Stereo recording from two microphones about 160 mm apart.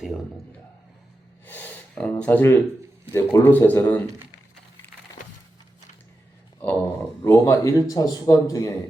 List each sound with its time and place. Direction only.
1.5 s speech: 10° left (ahead or behind)
7.3 s speech: 20° left (ahead or behind)